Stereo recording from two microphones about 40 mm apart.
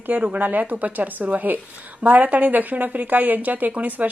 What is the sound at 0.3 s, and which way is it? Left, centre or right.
A woman's voice, right.